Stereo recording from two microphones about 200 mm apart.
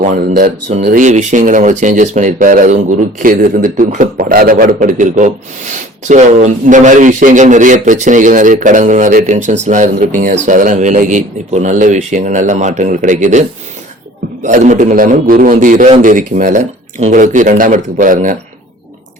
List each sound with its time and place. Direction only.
0.0 s speech: 45° right (ahead or behind)
14.4 s speech: 40° right (ahead or behind)